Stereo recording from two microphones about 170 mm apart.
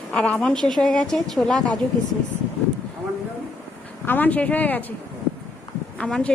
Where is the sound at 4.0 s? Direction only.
10° left (ahead or behind).